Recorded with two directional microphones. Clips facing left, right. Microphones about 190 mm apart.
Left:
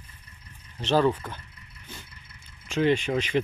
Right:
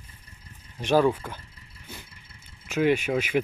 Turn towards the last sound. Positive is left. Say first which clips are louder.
# even
turn(degrees=-10)  # may be behind; listen again after turning